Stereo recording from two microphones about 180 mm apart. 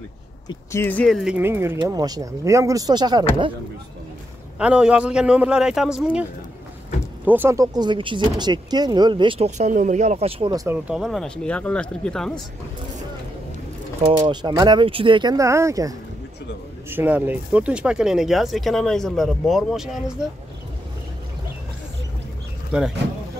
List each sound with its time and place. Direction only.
0.5 s speech: 15° left (ahead or behind); by 3.3 s 25° right (ahead or behind)
4.6 s speech: 5° right (ahead or behind)
7.2 s speech: 10° right (ahead or behind); by 10.5 s 35° right (ahead or behind)
10.5 s speech: 20° right (ahead or behind)
10.9 s speech: centre (ahead or behind)
14.1 s speech: 25° right (ahead or behind)
16.9 s speech: 10° right (ahead or behind)
22.7 s speech: centre (ahead or behind)